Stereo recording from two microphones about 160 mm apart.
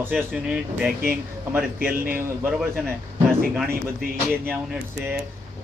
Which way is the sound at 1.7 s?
65° right (ahead or behind).